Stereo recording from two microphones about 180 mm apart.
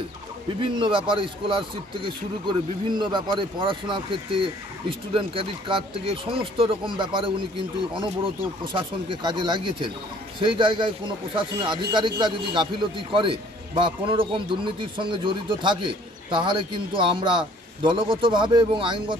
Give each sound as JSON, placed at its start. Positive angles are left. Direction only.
{"t": 0.6, "sound": "a man's voice", "side_deg": -25}